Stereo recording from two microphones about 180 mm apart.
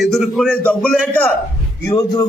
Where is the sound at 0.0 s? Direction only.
Centre (ahead or behind).